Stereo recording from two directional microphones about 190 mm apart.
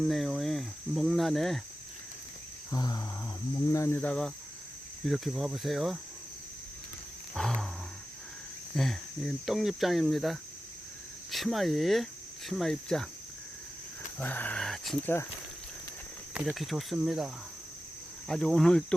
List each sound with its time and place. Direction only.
0.0 s speech: centre (ahead or behind)
2.6 s cricket: 20° left (ahead or behind)
3.7 s speech: 15° left (ahead or behind)
7.3 s cricket: centre (ahead or behind)
8.7 s speech: centre (ahead or behind)
14.2 s speech: 10° left (ahead or behind)
16.3 s speech: 5° right (ahead or behind)